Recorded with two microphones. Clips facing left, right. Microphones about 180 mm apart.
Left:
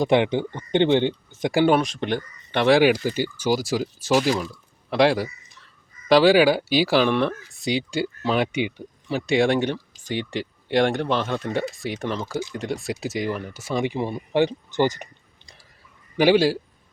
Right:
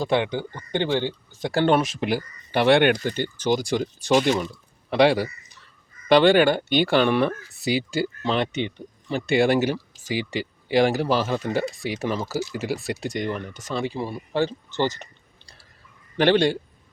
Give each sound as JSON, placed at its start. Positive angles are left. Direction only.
{"t": 0.0, "sound": "speech", "side_deg": 20}
{"t": 1.7, "sound": "speech", "side_deg": 0}
{"t": 16.1, "sound": "speech", "side_deg": 10}